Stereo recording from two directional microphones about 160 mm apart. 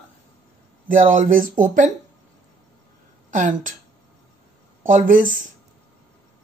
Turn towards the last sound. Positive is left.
turn(degrees=-55)  # may be behind; listen again after turning